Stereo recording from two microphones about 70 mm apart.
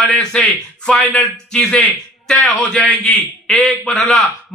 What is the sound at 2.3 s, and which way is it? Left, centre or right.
A man's voice, centre.